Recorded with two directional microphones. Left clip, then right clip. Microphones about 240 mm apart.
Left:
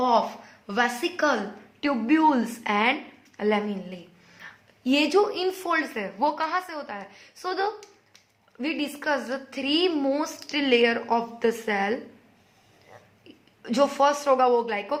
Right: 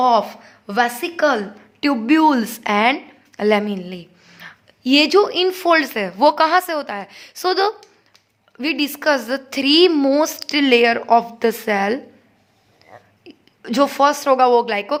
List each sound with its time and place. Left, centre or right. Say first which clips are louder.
0.0 s a woman's voice: right 7 dB; right